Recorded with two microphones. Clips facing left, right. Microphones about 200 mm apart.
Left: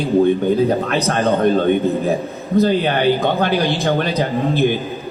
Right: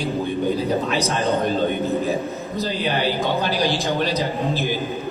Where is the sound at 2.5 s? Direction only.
55° left (ahead or behind).